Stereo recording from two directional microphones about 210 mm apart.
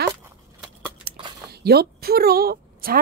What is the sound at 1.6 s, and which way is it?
Speech, 50° right (ahead or behind).